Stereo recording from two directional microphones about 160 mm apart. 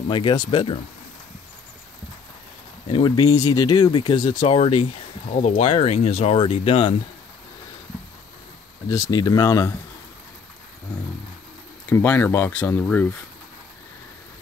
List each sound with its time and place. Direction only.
0.1 s speech: 30° left (ahead or behind)
2.9 s speech: 30° left (ahead or behind)
8.8 s speech: 20° left (ahead or behind)
11.9 s speech: 10° left (ahead or behind)